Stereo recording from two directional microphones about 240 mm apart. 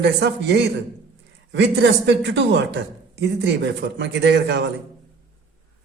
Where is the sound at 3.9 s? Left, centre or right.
Right.